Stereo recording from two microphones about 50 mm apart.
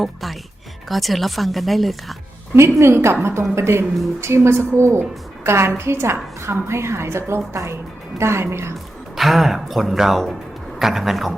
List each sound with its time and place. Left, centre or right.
0.0 s a woman's voice: centre
2.6 s a woman's voice: right
8.2 s a woman's voice: right
9.1 s speech: centre